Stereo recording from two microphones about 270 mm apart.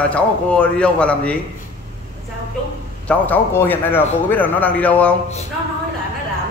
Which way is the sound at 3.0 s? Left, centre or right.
Centre.